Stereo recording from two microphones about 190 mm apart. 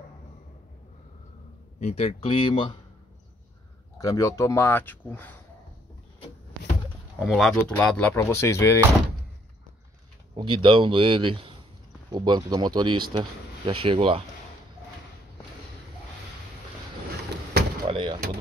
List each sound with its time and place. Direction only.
1.8 s speech: 35° left (ahead or behind)
4.0 s speech: 20° left (ahead or behind)
7.2 s speech: centre (ahead or behind)
10.3 s speech: 25° right (ahead or behind)
17.8 s door: 30° right (ahead or behind)